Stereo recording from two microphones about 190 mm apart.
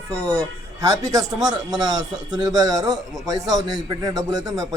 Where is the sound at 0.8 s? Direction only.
20° right (ahead or behind).